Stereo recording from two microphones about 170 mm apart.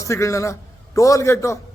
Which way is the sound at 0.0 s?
20° left (ahead or behind).